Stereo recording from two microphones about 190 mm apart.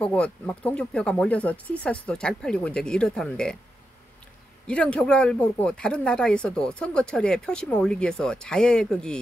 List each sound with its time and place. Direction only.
0.0 s speech: 5° left (ahead or behind)
4.6 s speech: 5° left (ahead or behind)